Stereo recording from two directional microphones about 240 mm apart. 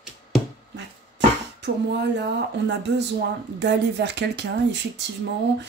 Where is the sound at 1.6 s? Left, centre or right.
Right.